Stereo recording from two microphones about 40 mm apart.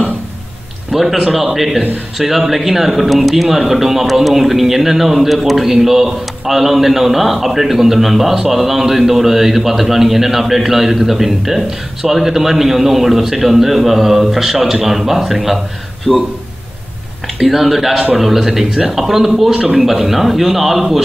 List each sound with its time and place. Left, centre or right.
0.9 s speech: centre
16.1 s speech: centre
17.4 s a man's voice: centre
19.5 s a man's voice: right
19.8 s speech: centre